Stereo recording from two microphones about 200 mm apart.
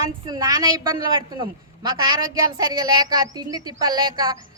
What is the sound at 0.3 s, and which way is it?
Speech, 20° right (ahead or behind).